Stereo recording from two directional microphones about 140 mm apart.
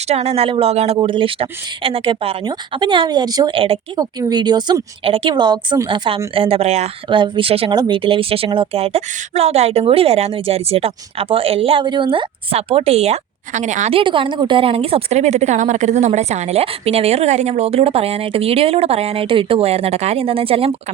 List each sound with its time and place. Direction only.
0.1 s a woman's voice: 50° right (ahead or behind)
0.9 s speech: 35° right (ahead or behind)
2.4 s speech: 30° right (ahead or behind)
3.5 s speech: 40° right (ahead or behind)
4.2 s a woman's voice: 30° right (ahead or behind); by 6.9 s 50° right (ahead or behind)
7.1 s a woman's voice: 35° right (ahead or behind); by 13.9 s 60° right (ahead or behind)
13.9 s a woman's voice: 35° right (ahead or behind)